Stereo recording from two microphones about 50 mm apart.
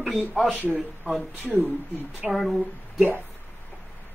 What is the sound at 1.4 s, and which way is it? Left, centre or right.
Speech, right.